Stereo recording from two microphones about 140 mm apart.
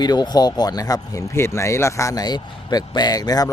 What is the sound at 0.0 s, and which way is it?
Speech, 30° left (ahead or behind).